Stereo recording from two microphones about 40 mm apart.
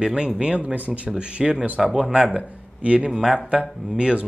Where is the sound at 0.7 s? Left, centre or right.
Right; by 2.2 s centre.